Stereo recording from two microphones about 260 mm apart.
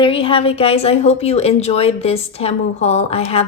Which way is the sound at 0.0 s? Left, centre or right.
Left.